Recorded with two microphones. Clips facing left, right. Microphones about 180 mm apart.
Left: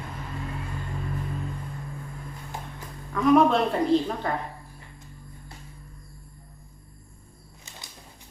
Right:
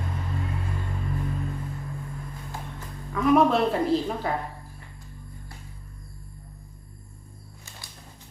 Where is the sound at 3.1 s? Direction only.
Centre (ahead or behind).